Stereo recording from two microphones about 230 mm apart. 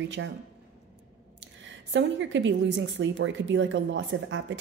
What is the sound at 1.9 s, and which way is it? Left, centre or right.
Speech, right.